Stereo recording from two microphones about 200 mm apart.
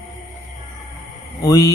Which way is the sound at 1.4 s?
15° left (ahead or behind).